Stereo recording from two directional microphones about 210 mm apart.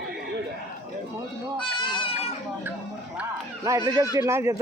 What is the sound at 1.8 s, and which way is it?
Goat, 25° left (ahead or behind).